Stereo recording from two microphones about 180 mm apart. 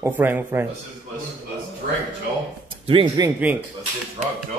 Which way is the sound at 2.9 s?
30° right (ahead or behind).